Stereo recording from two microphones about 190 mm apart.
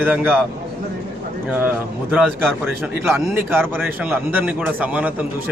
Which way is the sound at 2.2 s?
5° left (ahead or behind).